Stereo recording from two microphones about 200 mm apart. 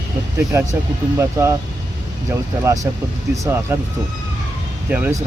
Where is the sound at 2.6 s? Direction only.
15° right (ahead or behind).